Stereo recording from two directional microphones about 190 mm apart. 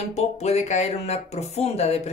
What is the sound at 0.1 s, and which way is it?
Speech, 35° left (ahead or behind).